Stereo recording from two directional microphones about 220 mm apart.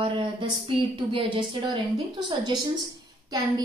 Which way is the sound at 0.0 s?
25° right (ahead or behind).